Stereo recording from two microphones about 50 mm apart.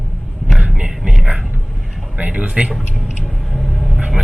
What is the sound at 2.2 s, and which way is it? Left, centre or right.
Speech, right.